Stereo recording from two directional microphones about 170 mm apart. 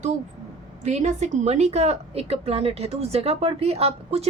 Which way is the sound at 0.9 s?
40° right (ahead or behind).